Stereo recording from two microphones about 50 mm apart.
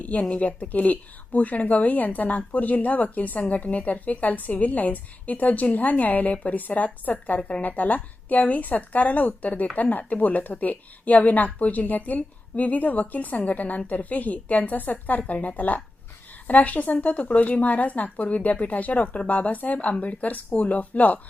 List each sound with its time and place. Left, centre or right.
0.0 s a woman's voice: left